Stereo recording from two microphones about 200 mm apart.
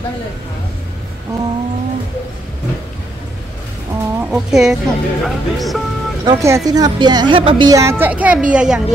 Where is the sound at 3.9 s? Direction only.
5° right (ahead or behind).